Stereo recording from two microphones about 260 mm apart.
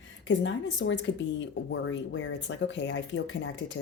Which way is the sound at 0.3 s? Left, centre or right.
Left.